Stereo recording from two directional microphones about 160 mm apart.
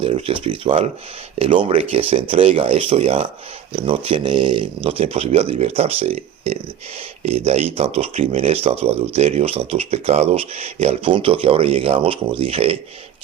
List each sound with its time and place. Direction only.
0.0 s speech: 35° right (ahead or behind)